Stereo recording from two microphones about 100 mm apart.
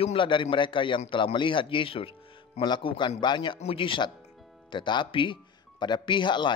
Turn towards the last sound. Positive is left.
turn(degrees=50)  # may be behind; listen again after turning